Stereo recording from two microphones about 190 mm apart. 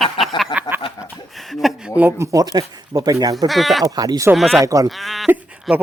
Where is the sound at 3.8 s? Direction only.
20° right (ahead or behind).